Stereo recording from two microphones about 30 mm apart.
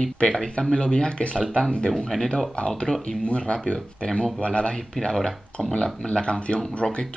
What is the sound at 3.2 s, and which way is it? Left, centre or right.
Speech, left.